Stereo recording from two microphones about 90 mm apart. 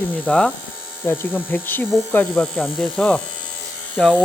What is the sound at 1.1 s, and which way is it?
Speech, 20° left (ahead or behind).